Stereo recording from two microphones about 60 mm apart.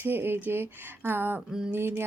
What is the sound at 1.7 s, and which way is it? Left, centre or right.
Speech, right.